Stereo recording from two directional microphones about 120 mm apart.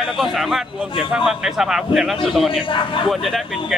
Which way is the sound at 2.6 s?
45° left (ahead or behind).